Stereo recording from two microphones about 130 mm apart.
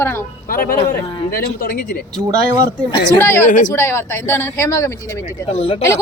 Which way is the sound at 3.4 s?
80° left.